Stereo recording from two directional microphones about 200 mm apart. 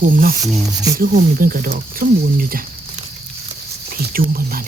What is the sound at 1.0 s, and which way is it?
Speech, 45° right (ahead or behind).